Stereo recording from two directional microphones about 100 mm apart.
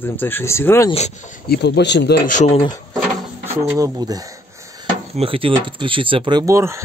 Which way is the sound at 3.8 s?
35° right (ahead or behind).